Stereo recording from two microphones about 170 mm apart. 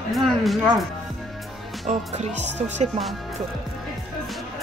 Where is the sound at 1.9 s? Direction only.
40° right (ahead or behind).